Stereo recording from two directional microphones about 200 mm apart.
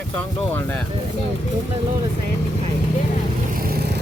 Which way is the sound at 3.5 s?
50° right (ahead or behind).